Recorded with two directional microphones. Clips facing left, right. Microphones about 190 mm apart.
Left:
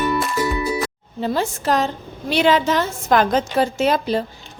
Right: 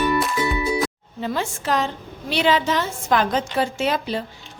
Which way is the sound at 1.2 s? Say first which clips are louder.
Left 4 dB; 35° left (ahead or behind).